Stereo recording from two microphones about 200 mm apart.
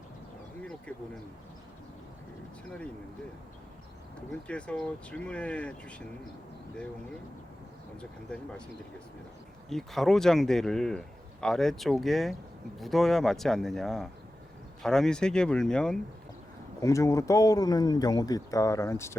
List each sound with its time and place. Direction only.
0.6 s a sound: 5° left (ahead or behind)
4.4 s a man's voice: 5° left (ahead or behind)
8.3 s a man's voice: 5° left (ahead or behind)
9.6 s a man's voice: centre (ahead or behind)
16.8 s speech: 15° left (ahead or behind)